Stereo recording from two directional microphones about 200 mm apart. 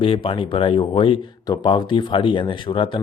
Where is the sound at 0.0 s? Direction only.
25° left (ahead or behind).